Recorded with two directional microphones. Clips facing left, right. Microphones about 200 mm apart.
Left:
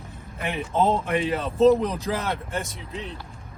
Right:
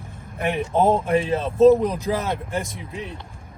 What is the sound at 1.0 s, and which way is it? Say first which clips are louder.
Speech: right 4 dB; 30° right (ahead or behind).